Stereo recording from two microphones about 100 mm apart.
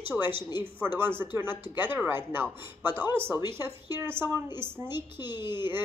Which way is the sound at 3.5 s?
25° right (ahead or behind).